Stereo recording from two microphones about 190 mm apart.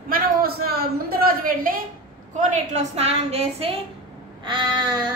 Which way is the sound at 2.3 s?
35° right (ahead or behind).